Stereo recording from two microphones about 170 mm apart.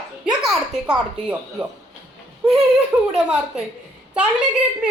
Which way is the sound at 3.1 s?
5° right (ahead or behind).